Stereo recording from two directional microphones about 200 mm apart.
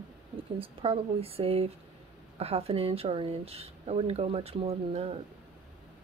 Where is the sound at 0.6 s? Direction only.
30° right (ahead or behind).